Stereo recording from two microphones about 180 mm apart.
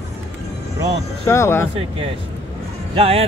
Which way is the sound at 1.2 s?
15° left (ahead or behind).